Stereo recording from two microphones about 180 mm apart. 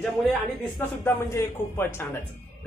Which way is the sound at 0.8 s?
15° left (ahead or behind).